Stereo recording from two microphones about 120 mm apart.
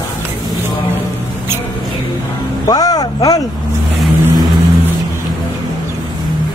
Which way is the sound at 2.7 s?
30° left (ahead or behind).